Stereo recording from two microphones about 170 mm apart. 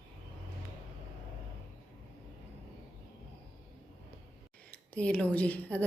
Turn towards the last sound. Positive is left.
turn(degrees=10)  # may be behind; listen again after turning